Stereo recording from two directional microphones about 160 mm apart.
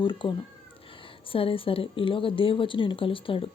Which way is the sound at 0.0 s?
30° left (ahead or behind).